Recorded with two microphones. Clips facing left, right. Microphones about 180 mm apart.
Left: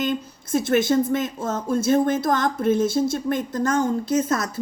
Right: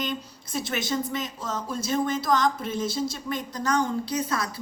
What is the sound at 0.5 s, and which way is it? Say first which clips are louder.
Speech: left 10 dB; 50° left (ahead or behind).